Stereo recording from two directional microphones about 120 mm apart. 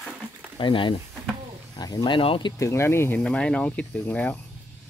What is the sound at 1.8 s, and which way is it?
Speech, 35° left (ahead or behind).